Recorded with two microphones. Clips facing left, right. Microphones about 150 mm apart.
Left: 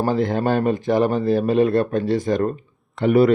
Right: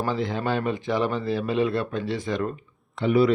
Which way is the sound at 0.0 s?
50° left (ahead or behind).